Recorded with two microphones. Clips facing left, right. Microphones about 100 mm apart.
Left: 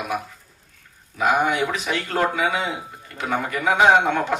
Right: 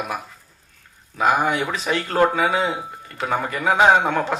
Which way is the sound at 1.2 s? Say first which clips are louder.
Right 1 dB; 35° right (ahead or behind).